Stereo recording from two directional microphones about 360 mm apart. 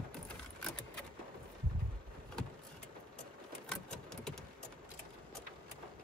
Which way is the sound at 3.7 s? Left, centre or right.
Centre.